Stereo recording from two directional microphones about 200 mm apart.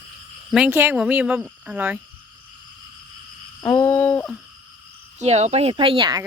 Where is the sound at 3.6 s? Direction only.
15° left (ahead or behind).